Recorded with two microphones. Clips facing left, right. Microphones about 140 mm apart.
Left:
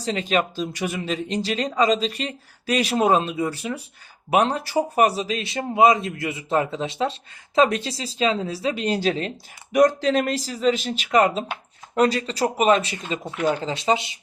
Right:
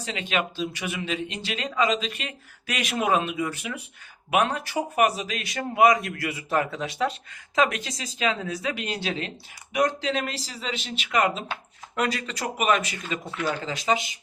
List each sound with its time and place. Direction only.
0.0 s speech: 40° left (ahead or behind)